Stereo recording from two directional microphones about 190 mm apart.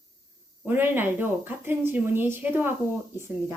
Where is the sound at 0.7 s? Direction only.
10° right (ahead or behind).